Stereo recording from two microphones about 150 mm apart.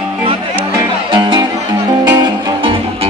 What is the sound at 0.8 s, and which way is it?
Music, 35° right (ahead or behind).